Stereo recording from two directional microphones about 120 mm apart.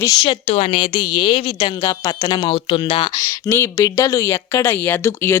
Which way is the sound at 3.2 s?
25° left (ahead or behind).